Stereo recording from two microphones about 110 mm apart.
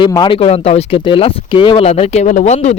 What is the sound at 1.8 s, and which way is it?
Speech, 70° left (ahead or behind).